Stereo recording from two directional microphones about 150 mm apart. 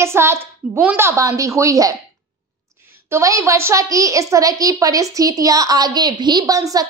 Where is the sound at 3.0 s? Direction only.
20° right (ahead or behind).